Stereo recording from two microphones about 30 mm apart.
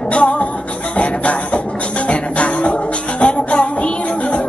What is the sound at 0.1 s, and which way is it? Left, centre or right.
Music, left.